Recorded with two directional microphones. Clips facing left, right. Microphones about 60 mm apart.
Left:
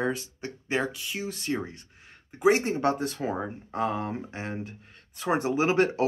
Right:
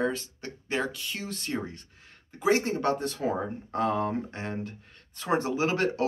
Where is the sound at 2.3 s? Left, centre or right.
Left.